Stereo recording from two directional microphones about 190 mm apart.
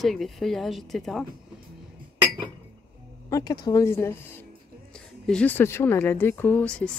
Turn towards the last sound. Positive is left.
turn(degrees=5)  # may be behind; listen again after turning